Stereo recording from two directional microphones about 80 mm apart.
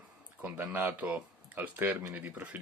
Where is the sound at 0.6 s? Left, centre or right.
Right.